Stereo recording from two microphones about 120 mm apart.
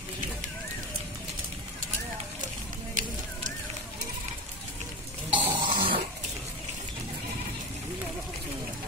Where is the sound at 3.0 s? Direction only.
90° right.